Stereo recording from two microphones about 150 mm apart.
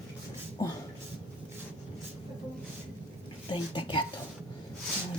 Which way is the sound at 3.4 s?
35° left (ahead or behind).